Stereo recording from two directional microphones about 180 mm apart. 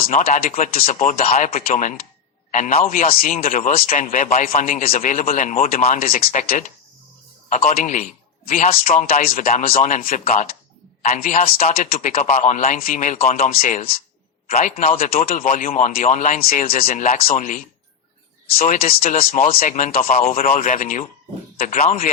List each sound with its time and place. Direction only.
0.0 s speech: 45° left (ahead or behind)